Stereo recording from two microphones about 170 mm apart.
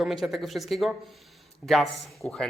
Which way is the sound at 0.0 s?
Centre (ahead or behind).